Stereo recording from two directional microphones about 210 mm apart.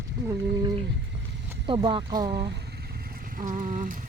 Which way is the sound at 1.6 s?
25° right (ahead or behind).